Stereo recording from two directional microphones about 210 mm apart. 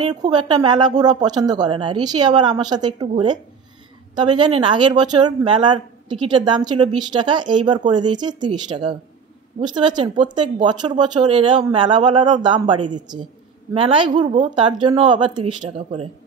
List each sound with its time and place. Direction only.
0.1 s speech: 20° right (ahead or behind)